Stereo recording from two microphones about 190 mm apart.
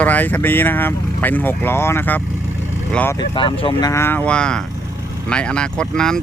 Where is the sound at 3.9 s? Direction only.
15° left (ahead or behind).